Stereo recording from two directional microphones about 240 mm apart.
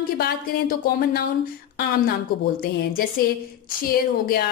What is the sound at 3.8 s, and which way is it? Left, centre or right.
Speech, left.